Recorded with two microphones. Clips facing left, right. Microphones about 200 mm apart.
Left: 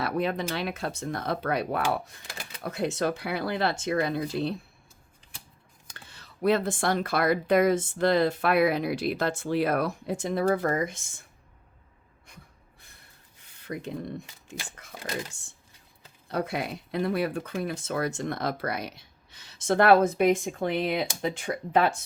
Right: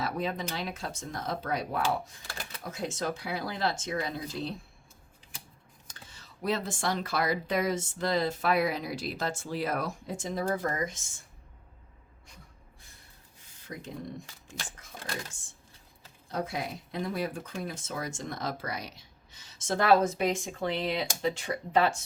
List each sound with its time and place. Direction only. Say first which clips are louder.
0.0 s speech: left 5 dB; 65° left (ahead or behind)
5.9 s speech: left 2 dB; 60° left (ahead or behind)
13.5 s a sound: left 7 dB; 65° left (ahead or behind)
16.3 s speech: left 4 dB; 65° left (ahead or behind)